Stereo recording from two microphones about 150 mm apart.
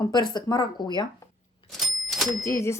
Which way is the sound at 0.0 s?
30° left (ahead or behind).